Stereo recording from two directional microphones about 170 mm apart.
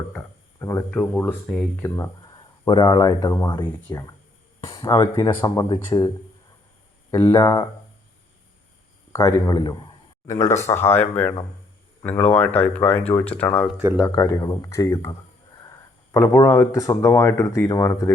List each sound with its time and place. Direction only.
0.1 s speech: 15° left (ahead or behind)
2.6 s speech: 25° left (ahead or behind)
9.1 s speech: 20° left (ahead or behind)
16.1 s speech: 20° left (ahead or behind)